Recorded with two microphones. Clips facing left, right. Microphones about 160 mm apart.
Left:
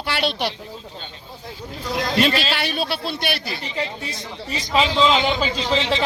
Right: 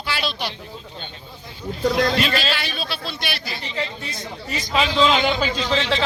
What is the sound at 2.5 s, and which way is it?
Speech, 60° left (ahead or behind).